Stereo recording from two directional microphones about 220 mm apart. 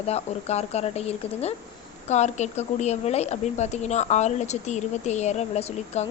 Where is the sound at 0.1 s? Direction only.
30° left (ahead or behind).